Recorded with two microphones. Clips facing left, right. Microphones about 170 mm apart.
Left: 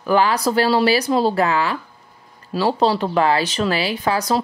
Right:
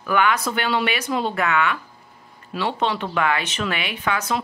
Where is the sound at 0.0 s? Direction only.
30° left (ahead or behind).